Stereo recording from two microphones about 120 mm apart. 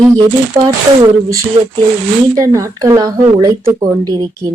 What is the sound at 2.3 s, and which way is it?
Speech, 25° right (ahead or behind).